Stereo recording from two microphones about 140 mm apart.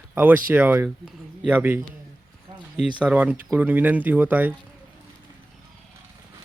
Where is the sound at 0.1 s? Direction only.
10° right (ahead or behind).